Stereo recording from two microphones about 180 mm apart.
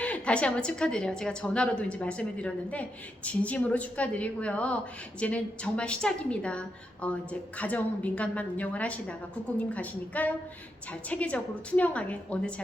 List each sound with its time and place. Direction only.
0.0 s a woman's voice: 5° left (ahead or behind)